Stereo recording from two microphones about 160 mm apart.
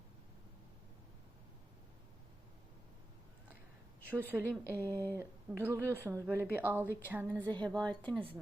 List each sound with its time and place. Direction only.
4.1 s a woman's voice: 10° right (ahead or behind)
4.6 s speech: 15° left (ahead or behind)
5.1 s a woman's voice: 15° right (ahead or behind)
7.6 s a woman's voice: 5° left (ahead or behind)